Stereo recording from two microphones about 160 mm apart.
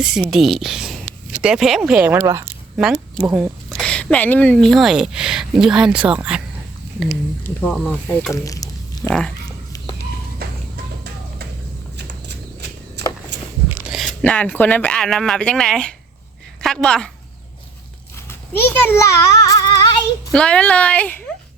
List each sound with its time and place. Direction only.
0.0 s speech: 5° right (ahead or behind)
2.7 s speech: 5° right (ahead or behind)
3.8 s speech: 5° left (ahead or behind)
7.4 s speech: 10° left (ahead or behind)
8.3 s a sound: 20° left (ahead or behind)
11.9 s a sound: 90° right
13.9 s a woman's voice: centre (ahead or behind)
18.3 s a sound: 15° left (ahead or behind)
20.3 s speech: 5° left (ahead or behind)